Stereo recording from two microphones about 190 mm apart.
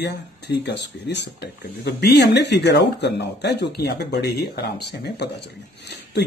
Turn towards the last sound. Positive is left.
turn(degrees=60)  # may be behind; listen again after turning